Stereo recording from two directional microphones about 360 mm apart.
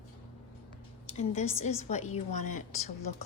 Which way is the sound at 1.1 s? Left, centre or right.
Centre.